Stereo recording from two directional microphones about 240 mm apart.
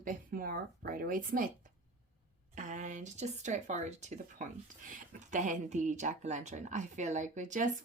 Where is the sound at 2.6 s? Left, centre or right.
Right.